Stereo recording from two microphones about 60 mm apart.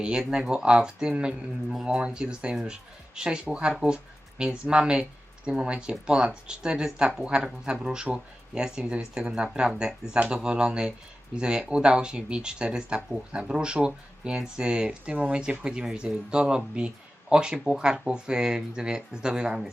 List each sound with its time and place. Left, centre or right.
0.0 s speech: centre